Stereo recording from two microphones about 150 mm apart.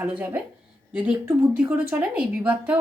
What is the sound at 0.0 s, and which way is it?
Speech, 10° right (ahead or behind).